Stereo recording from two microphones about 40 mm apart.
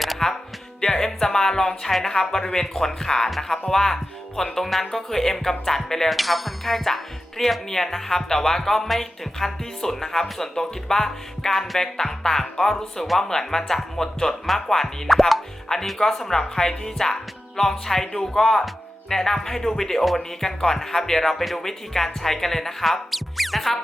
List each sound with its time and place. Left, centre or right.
0.2 s music: centre
0.8 s speech: centre